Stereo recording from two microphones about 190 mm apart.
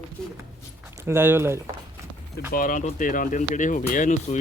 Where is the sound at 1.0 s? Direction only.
10° right (ahead or behind).